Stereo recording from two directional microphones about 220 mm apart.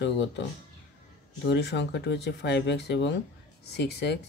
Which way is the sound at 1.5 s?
50° left (ahead or behind).